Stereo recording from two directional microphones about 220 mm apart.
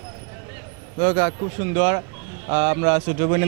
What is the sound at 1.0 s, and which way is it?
A man's voice, 15° right (ahead or behind).